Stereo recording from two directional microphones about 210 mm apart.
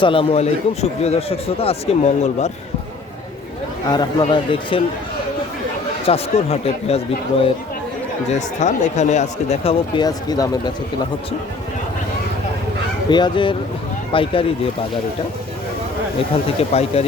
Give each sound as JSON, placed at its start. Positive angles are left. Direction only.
{"t": 0.0, "sound": "a man's voice", "side_deg": 25}
{"t": 3.8, "sound": "a man's voice", "side_deg": 20}
{"t": 6.1, "sound": "a man's voice", "side_deg": 30}
{"t": 8.3, "sound": "speech", "side_deg": 35}
{"t": 13.1, "sound": "a man's voice", "side_deg": 20}
{"t": 16.6, "sound": "a man's voice", "side_deg": 30}